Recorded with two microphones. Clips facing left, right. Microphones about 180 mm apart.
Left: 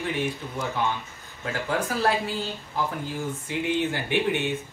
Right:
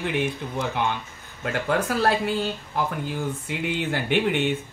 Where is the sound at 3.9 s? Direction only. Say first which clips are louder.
Right 2 dB; 60° right (ahead or behind).